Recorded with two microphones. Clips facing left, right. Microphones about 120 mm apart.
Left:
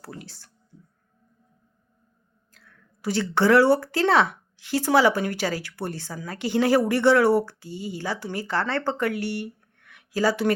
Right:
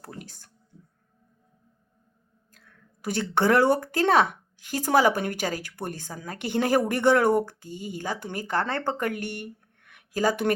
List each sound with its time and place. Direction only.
0.0 s a woman's voice: 45° right (ahead or behind)
2.5 s a woman's voice: 50° right (ahead or behind)